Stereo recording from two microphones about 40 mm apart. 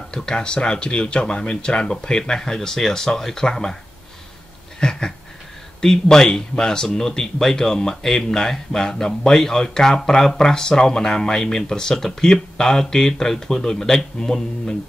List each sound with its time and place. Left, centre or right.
0.1 s speech: centre
4.7 s a sound: centre
5.8 s speech: centre